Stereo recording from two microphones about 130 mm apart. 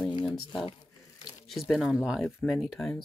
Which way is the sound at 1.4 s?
Centre (ahead or behind).